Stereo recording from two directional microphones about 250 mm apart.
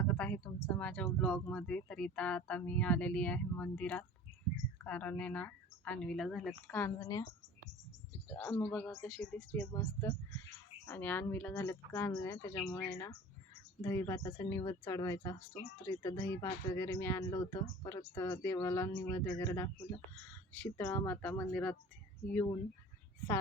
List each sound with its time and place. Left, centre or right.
0.0 s speech: centre
8.4 s speech: centre